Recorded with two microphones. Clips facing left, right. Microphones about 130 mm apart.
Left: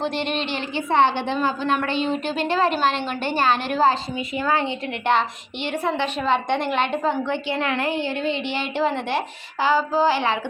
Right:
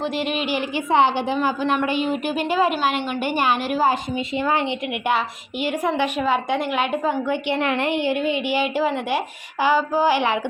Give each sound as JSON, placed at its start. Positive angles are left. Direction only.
{"t": 0.0, "sound": "a woman's voice", "side_deg": -5}
{"t": 7.5, "sound": "a woman's voice", "side_deg": -20}